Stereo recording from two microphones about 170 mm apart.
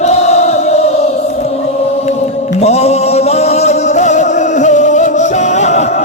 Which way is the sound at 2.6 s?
40° left (ahead or behind).